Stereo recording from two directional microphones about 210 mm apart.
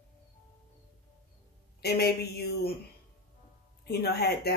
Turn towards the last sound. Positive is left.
turn(degrees=50)  # may be behind; listen again after turning